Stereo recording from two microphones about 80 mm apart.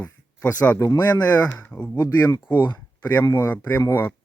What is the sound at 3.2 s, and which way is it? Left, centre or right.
Speech, left.